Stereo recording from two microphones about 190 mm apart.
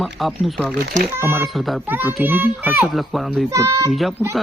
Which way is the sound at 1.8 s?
10° right (ahead or behind).